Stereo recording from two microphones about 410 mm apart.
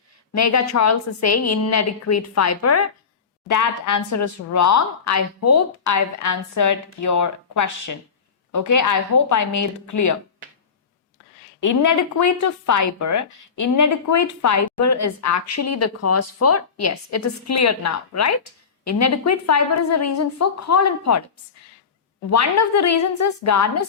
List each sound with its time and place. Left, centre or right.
0.3 s a woman's voice: left
11.6 s speech: left
22.3 s speech: left